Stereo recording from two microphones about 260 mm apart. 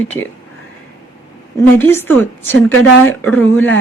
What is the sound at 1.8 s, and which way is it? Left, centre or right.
A woman's voice, centre.